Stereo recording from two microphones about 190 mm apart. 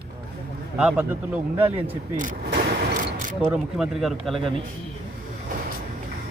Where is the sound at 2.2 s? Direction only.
45° right (ahead or behind).